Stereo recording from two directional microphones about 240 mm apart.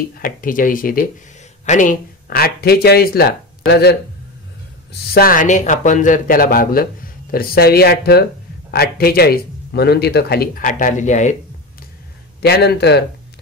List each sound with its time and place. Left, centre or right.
0.2 s speech: left
5.1 s speech: left
12.4 s a man's voice: left